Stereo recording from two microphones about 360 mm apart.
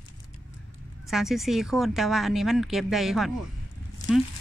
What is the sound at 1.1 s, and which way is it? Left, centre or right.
Speech, centre.